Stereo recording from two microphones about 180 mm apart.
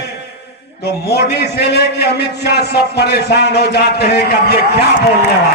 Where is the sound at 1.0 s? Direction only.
65° left (ahead or behind).